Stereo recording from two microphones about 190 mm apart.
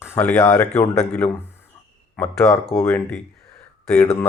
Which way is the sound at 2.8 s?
5° left (ahead or behind).